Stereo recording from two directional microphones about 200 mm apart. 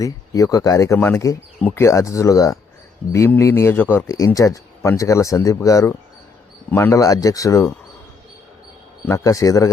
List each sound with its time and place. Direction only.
0.0 s speech: 15° left (ahead or behind)
9.0 s speech: 15° left (ahead or behind)